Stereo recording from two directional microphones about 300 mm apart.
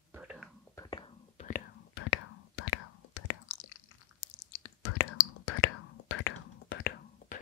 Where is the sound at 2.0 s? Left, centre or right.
Left.